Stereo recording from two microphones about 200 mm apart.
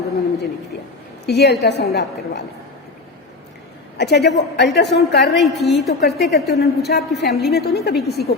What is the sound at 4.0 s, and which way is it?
A woman's voice, 55° left (ahead or behind).